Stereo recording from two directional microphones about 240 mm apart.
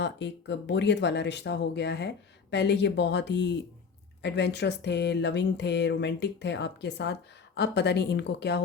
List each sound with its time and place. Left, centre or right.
0.0 s speech: left